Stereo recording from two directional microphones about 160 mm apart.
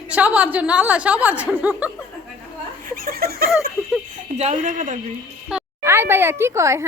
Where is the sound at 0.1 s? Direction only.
10° right (ahead or behind).